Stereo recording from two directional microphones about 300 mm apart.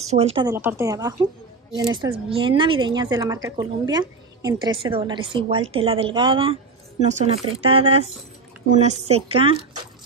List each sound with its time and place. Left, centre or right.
0.1 s a woman's voice: centre